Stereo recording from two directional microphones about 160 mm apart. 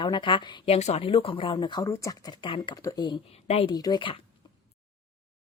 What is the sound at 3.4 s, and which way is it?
Speech, 40° left (ahead or behind).